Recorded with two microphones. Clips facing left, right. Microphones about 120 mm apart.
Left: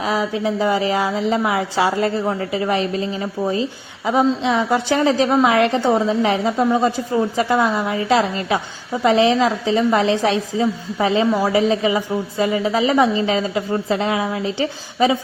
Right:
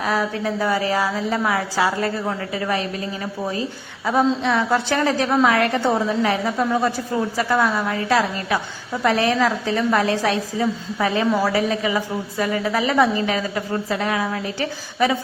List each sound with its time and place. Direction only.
0.0 s a woman's voice: 15° left (ahead or behind)